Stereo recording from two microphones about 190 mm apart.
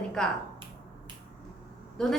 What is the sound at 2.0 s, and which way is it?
Speech, 5° left (ahead or behind).